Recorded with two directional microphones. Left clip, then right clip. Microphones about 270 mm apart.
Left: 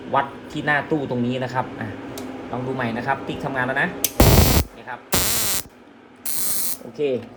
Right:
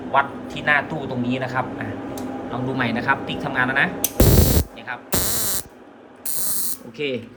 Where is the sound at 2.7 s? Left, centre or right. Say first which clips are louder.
Right 3 dB; centre.